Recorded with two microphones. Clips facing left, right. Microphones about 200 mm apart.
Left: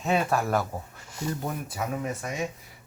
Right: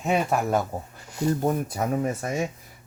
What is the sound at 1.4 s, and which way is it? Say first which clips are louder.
Speech: right 7 dB; 40° right (ahead or behind).